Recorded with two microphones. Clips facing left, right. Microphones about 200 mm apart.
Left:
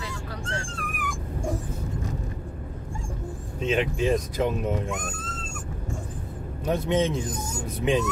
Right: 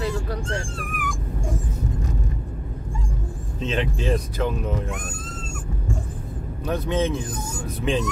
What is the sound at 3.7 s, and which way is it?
Speech, 15° left (ahead or behind).